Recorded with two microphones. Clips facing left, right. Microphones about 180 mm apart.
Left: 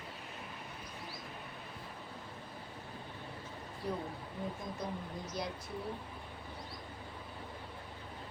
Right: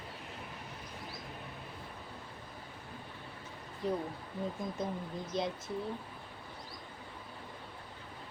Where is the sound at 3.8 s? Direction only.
20° right (ahead or behind).